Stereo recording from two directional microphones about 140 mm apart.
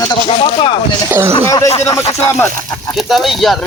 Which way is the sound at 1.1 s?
15° right (ahead or behind).